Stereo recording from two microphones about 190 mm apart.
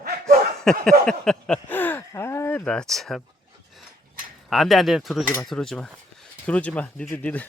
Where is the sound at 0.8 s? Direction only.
5° left (ahead or behind).